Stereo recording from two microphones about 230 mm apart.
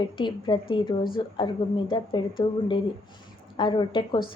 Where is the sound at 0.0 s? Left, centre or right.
Centre.